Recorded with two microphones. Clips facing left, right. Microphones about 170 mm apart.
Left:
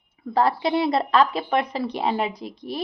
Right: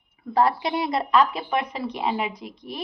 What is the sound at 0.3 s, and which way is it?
A woman's voice, 30° left (ahead or behind).